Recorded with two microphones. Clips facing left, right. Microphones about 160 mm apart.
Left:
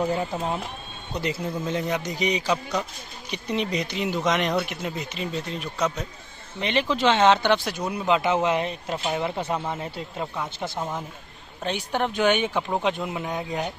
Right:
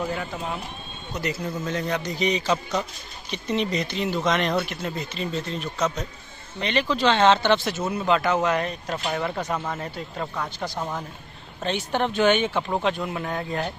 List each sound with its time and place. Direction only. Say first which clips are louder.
0.1 s speech: left 4 dB; 35° left (ahead or behind)
1.6 s speech: left 1 dB; 15° left (ahead or behind)
8.2 s speech: even; 25° left (ahead or behind)
9.4 s speech: even; 25° left (ahead or behind)
10.8 s speech: even; 5° left (ahead or behind)